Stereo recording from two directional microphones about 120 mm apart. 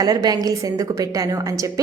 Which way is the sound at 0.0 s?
30° right (ahead or behind).